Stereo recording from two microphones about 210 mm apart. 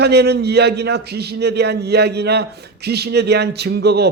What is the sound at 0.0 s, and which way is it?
A man's voice, 50° right (ahead or behind).